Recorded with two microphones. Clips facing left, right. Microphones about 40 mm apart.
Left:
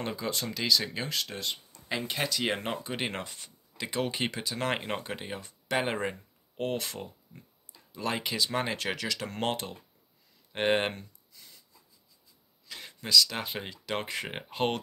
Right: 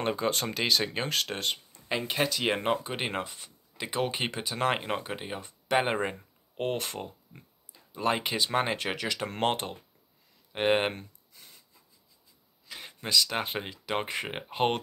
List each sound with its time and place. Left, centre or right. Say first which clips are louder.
0.0 s speech: right 5 dB; right
1.9 s speech: right 3 dB; centre
4.7 s speech: right 2 dB; centre
6.5 s speech: right 1 dB; right
10.5 s speech: right 1 dB; centre
11.0 s a sound: right 2 dB; right
12.6 s a sound: right 1 dB; centre
13.0 s speech: left 1 dB; right
13.6 s speech: right 2 dB; centre